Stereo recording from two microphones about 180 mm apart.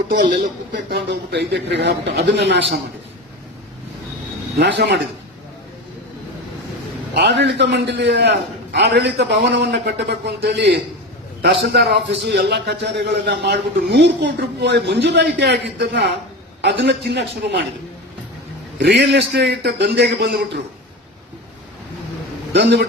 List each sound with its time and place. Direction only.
0.7 s a man's voice: 70° right (ahead or behind)
4.6 s a man's voice: 75° right (ahead or behind)
7.2 s a man's voice: 70° right (ahead or behind)
18.8 s a man's voice: 70° right (ahead or behind)
22.5 s a man's voice: 75° right (ahead or behind)